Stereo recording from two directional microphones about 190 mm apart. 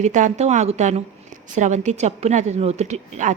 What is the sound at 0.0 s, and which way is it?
A woman's voice, 40° right (ahead or behind).